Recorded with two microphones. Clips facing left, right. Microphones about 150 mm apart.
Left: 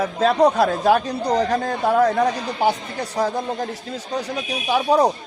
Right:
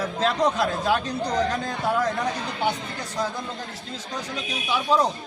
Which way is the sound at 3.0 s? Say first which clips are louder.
Left 6 dB; 65° left (ahead or behind).